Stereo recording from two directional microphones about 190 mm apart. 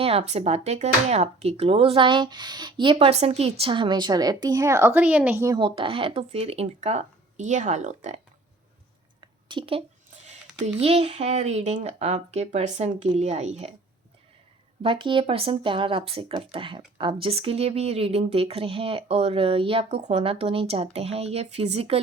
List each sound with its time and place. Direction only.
0.0 s speech: 30° right (ahead or behind)
9.5 s a woman's voice: 25° right (ahead or behind)
14.8 s a woman's voice: 25° right (ahead or behind)